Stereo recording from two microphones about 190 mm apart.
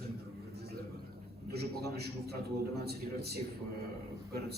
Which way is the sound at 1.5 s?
55° right (ahead or behind).